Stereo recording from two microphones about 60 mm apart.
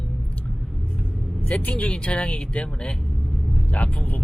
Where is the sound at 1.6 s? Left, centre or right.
Left.